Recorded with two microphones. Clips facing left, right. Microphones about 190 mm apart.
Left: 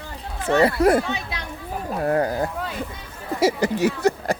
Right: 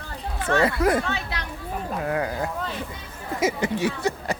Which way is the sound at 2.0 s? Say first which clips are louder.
Left 6 dB; 40° left (ahead or behind).